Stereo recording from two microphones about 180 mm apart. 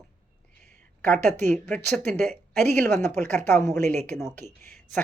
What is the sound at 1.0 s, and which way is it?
Speech, 10° left (ahead or behind).